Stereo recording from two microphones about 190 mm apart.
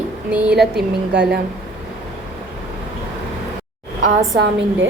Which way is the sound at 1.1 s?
65° right (ahead or behind).